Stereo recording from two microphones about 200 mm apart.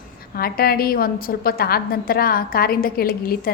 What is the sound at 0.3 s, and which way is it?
A woman's voice, 50° left (ahead or behind).